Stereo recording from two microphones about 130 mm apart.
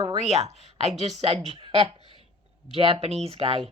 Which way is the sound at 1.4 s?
45° right (ahead or behind).